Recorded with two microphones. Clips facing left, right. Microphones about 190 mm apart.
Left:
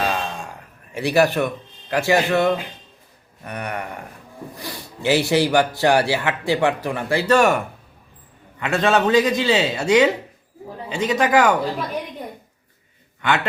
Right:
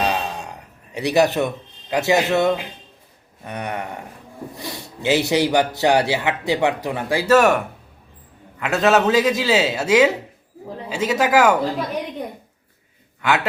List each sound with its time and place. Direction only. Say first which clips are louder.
0.0 s a sound: right 1 dB; 20° right (ahead or behind)
0.9 s a man's voice: even; 20° right (ahead or behind)
13.2 s a man's voice: right 1 dB; 5° right (ahead or behind)